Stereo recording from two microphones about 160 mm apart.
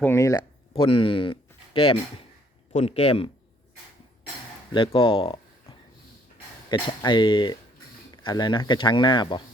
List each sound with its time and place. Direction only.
0.0 s speech: 15° left (ahead or behind)
0.7 s speech: 35° left (ahead or behind)
4.7 s speech: 35° left (ahead or behind)